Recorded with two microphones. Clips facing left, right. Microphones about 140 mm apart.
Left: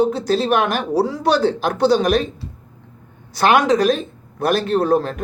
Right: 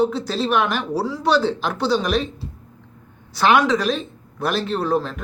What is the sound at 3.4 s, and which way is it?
Speech, 45° left (ahead or behind).